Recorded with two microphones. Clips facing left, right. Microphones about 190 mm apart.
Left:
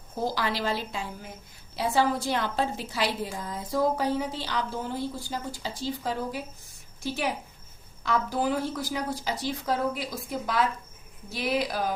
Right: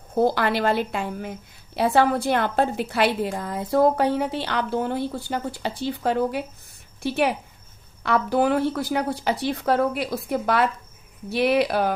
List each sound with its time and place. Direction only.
0.1 s a woman's voice: 60° right (ahead or behind)